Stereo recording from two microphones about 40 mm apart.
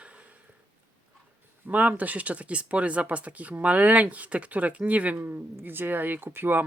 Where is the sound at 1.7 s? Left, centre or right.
Right.